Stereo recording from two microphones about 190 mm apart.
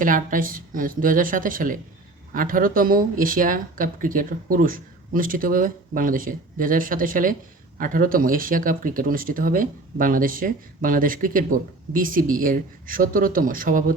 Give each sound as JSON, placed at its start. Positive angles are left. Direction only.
{"t": 0.0, "sound": "speech", "side_deg": -45}